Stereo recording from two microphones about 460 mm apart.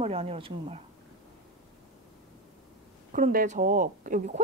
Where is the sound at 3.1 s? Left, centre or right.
Centre.